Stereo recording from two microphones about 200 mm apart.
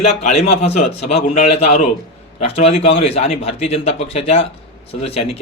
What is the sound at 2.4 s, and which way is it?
A man's voice, 30° left (ahead or behind).